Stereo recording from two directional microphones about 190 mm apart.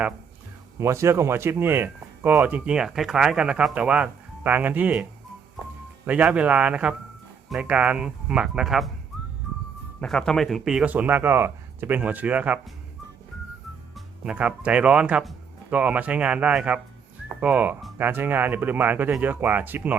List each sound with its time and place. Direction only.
0.8 s speech: 15° right (ahead or behind)
6.1 s speech: 5° right (ahead or behind)
10.0 s speech: 5° left (ahead or behind)
13.9 s speech: 5° right (ahead or behind)